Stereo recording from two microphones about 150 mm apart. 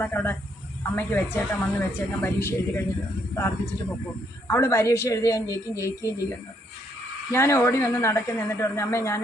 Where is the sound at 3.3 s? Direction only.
15° left (ahead or behind).